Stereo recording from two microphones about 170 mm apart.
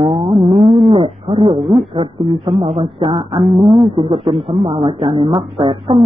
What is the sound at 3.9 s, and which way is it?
Speech, 30° right (ahead or behind).